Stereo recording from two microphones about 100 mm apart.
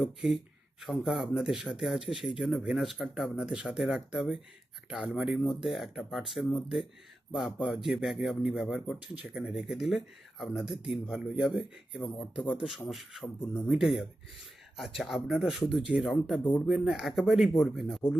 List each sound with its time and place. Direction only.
0.0 s speech: 5° right (ahead or behind)
13.2 s speech: 20° left (ahead or behind)
13.7 s speech: 5° right (ahead or behind)